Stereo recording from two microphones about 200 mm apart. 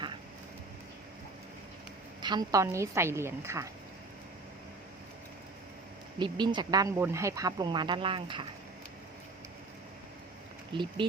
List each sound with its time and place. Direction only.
2.2 s a woman's voice: 20° right (ahead or behind)
6.1 s speech: 20° right (ahead or behind)
10.7 s speech: 25° right (ahead or behind)